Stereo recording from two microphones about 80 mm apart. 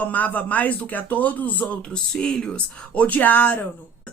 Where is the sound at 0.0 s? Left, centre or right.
Centre.